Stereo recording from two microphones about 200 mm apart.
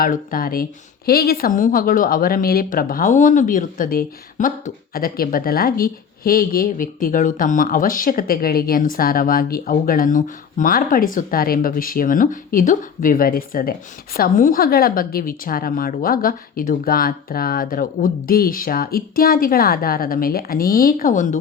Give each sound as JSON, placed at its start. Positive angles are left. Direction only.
{"t": 0.0, "sound": "speech", "side_deg": 45}